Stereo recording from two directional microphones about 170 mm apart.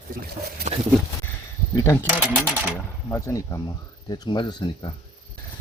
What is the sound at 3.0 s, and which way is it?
Speech, 15° left (ahead or behind).